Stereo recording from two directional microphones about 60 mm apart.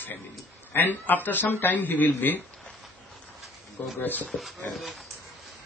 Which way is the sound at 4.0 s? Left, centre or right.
Left.